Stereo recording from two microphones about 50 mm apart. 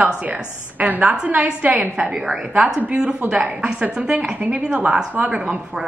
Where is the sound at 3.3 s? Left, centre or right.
Right.